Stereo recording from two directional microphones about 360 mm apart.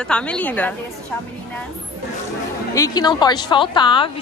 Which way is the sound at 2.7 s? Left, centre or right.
Centre.